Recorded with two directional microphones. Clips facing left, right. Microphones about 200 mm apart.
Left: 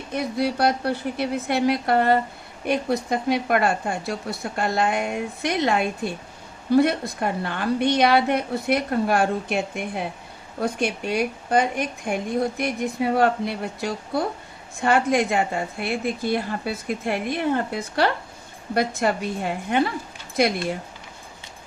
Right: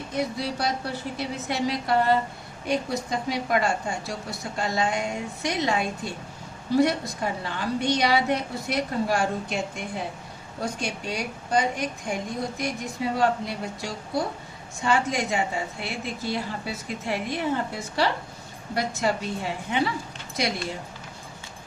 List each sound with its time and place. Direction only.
0.3 s a woman's voice: 60° left (ahead or behind)